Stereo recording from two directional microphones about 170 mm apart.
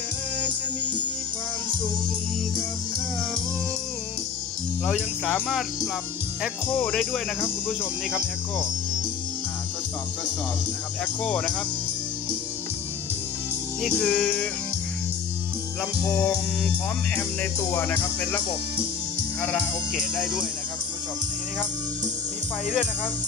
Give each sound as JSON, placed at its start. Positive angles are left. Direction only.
{"t": 4.8, "sound": "speech", "side_deg": 5}
{"t": 6.7, "sound": "music", "side_deg": 10}
{"t": 11.2, "sound": "music", "side_deg": 5}
{"t": 13.8, "sound": "speech", "side_deg": 5}
{"t": 15.8, "sound": "speech", "side_deg": 5}
{"t": 17.1, "sound": "music", "side_deg": 10}
{"t": 19.4, "sound": "speech", "side_deg": 0}